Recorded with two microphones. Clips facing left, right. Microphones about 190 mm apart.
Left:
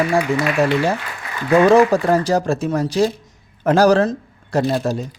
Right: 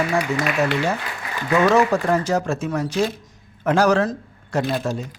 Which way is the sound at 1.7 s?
35° left (ahead or behind).